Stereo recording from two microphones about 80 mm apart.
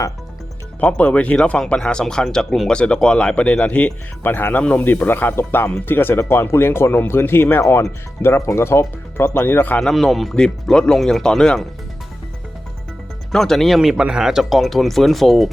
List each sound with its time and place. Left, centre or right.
0.8 s speech: centre
9.8 s speech: centre
13.3 s speech: centre